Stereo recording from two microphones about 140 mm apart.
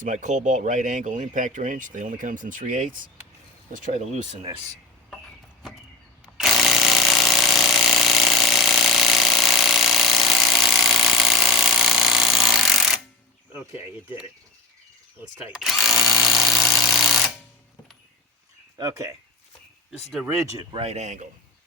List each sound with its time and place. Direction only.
0.0 s speech: 65° right (ahead or behind)
6.2 s tools: 5° right (ahead or behind)
13.5 s speech: 15° right (ahead or behind)
15.5 s speech: centre (ahead or behind)
16.7 s a sound: centre (ahead or behind)
18.8 s speech: 25° right (ahead or behind)
20.3 s speech: 20° right (ahead or behind)
20.7 s speech: 50° right (ahead or behind)